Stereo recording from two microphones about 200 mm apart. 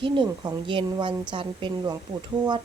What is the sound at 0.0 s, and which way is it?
Speech, 25° right (ahead or behind).